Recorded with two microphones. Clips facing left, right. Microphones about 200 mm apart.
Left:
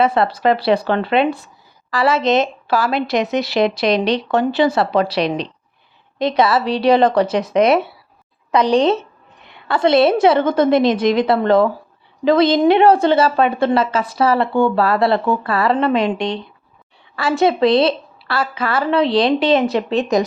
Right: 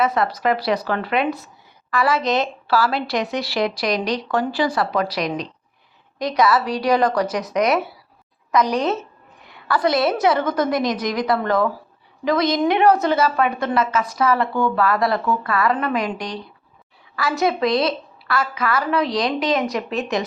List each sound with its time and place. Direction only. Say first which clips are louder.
0.0 s a woman's voice: left 4 dB; 30° left (ahead or behind)